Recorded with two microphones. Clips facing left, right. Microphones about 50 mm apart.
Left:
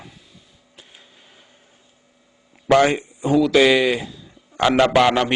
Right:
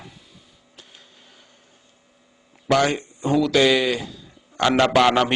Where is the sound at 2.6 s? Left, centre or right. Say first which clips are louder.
Left 4 dB; centre.